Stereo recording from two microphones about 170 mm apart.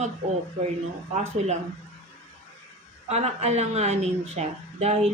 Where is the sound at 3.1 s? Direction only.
40° right (ahead or behind).